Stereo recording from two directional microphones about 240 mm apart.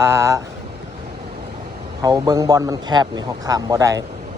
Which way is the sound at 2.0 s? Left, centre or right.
Centre.